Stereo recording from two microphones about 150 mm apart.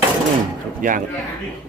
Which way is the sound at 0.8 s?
65° right (ahead or behind).